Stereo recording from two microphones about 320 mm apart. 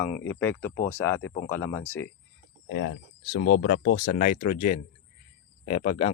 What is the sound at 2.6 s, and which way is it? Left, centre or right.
Speech, left.